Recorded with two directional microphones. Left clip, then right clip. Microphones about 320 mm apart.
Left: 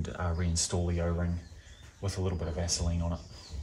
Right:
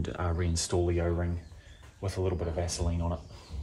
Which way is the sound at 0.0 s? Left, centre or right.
Right.